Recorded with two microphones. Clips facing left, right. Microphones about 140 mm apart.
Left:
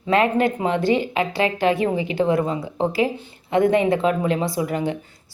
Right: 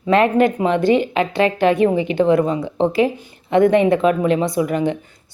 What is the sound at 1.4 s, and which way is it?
Speech, 20° left (ahead or behind).